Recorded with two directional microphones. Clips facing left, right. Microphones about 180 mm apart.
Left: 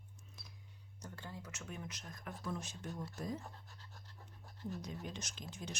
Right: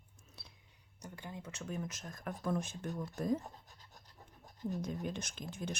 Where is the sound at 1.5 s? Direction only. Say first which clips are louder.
Right 6 dB; 40° right (ahead or behind).